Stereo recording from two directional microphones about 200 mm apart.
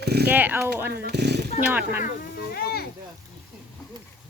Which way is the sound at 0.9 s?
55° right (ahead or behind).